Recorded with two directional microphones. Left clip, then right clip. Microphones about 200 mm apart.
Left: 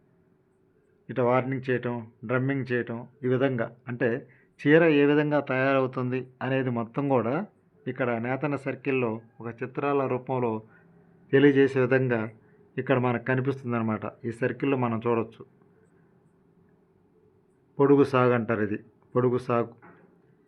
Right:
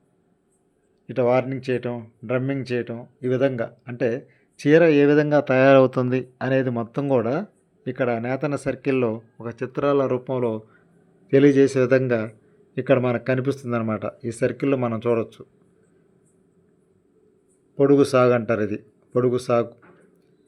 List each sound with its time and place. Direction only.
1.0 s speech: 20° right (ahead or behind)
17.7 s speech: 15° right (ahead or behind)